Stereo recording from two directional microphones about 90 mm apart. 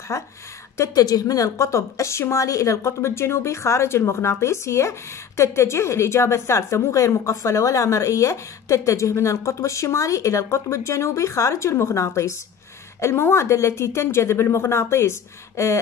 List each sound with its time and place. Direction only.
0.1 s speech: 35° left (ahead or behind)